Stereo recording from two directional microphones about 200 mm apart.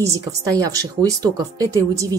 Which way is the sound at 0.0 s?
15° right (ahead or behind).